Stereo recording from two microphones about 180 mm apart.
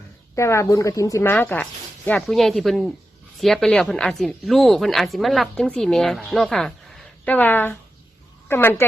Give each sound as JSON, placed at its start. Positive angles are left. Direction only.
{"t": 0.3, "sound": "a woman's voice", "side_deg": 15}